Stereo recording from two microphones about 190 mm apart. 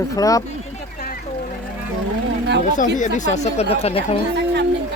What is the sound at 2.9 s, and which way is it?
Speech, 40° left (ahead or behind).